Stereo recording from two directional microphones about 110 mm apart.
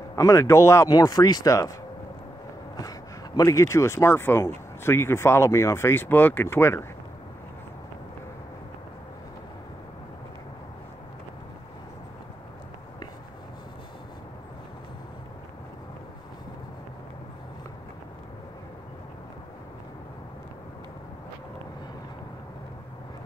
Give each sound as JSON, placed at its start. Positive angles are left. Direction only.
{"t": 0.1, "sound": "speech", "side_deg": 30}
{"t": 2.8, "sound": "speech", "side_deg": 35}